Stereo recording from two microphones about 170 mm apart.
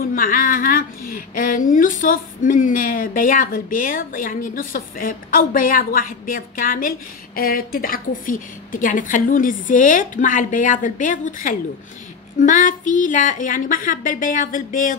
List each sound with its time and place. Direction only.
0.0 s speech: 55° left (ahead or behind)